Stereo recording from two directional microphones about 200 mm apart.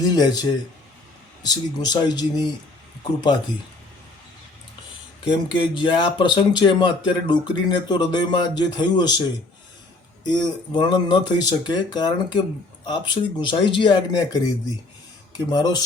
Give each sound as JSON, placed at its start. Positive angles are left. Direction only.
{"t": 0.0, "sound": "speech", "side_deg": 20}
{"t": 5.3, "sound": "speech", "side_deg": 25}
{"t": 10.2, "sound": "speech", "side_deg": 20}
{"t": 15.4, "sound": "speech", "side_deg": 20}